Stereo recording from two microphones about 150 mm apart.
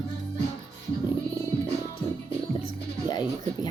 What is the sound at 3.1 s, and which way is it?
Speech, 25° left (ahead or behind).